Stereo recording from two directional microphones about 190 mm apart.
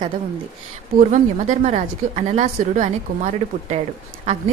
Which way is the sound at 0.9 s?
40° right (ahead or behind).